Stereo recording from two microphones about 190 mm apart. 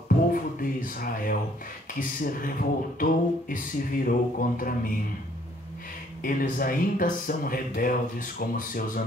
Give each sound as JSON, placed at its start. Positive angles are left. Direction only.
{"t": 0.3, "sound": "a sound", "side_deg": 45}
{"t": 2.0, "sound": "speech", "side_deg": 50}
{"t": 6.2, "sound": "speech", "side_deg": 45}